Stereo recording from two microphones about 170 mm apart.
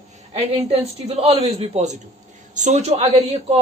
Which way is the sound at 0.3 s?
40° right (ahead or behind).